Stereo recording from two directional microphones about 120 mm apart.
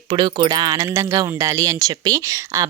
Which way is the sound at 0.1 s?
40° right (ahead or behind).